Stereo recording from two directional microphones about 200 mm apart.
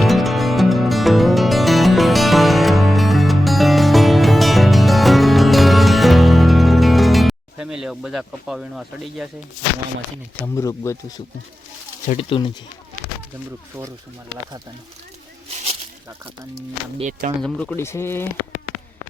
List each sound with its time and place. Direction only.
0.0 s music: centre (ahead or behind)
10.4 s speech: 15° left (ahead or behind)
12.0 s speech: 30° left (ahead or behind)
17.0 s speech: 40° right (ahead or behind)
17.4 s speech: 5° left (ahead or behind)